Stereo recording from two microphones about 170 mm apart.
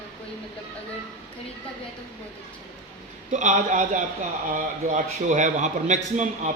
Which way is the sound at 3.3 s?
45° right (ahead or behind).